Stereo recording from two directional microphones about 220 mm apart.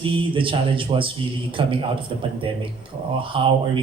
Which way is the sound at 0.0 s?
25° right (ahead or behind).